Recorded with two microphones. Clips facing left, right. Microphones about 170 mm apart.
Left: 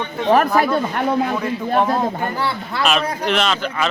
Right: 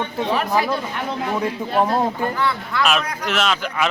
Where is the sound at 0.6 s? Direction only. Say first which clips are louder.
Left 5 dB; 55° left (ahead or behind).